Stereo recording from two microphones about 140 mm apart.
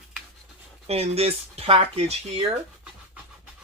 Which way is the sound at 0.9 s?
45° right (ahead or behind).